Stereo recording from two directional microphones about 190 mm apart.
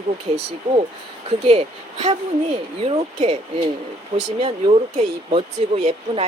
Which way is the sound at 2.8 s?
30° right (ahead or behind).